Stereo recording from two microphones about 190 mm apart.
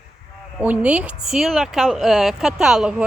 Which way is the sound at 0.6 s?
5° right (ahead or behind).